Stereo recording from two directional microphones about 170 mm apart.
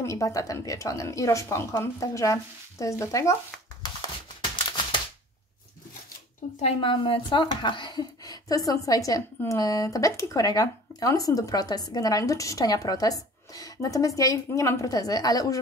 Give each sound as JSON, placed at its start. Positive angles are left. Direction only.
{"t": 0.0, "sound": "speech", "side_deg": 20}
{"t": 6.6, "sound": "speech", "side_deg": 30}